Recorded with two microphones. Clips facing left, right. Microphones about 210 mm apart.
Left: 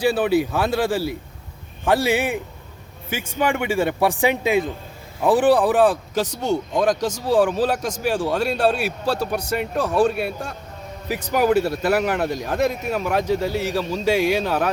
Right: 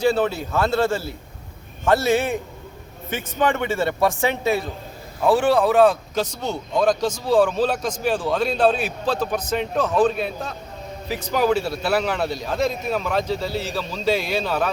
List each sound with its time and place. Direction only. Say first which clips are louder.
0.0 s a man's voice: left 2 dB; 15° left (ahead or behind)